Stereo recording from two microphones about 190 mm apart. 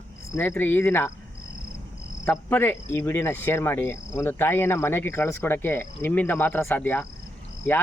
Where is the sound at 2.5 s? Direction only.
10° left (ahead or behind).